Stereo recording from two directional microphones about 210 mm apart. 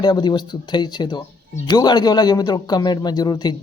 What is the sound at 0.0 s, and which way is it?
Speech, 20° left (ahead or behind).